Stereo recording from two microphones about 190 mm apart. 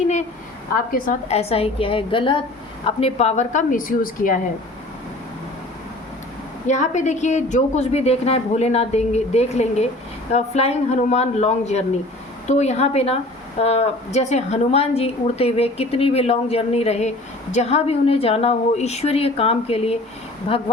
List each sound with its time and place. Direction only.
0.9 s a woman's voice: 45° left (ahead or behind)
1.3 s a woman's voice: 35° left (ahead or behind)
6.7 s a woman's voice: 40° left (ahead or behind)